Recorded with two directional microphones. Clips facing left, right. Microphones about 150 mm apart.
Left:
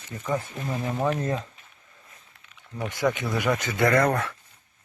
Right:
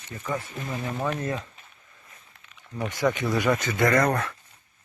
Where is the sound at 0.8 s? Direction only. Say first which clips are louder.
Left 3 dB; 20° left (ahead or behind).